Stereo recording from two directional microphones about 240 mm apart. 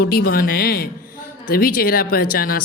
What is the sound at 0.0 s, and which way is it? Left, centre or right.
Speech, left.